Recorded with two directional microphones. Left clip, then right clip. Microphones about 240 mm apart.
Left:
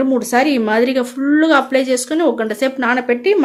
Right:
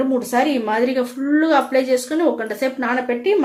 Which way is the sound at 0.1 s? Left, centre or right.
Left.